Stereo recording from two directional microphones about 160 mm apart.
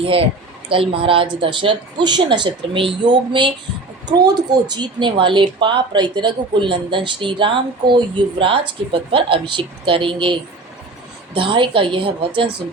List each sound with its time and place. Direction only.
0.0 s a woman's voice: 35° right (ahead or behind)
11.3 s speech: 30° right (ahead or behind)